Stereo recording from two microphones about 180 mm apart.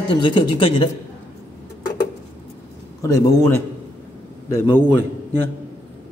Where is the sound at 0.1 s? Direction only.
25° left (ahead or behind).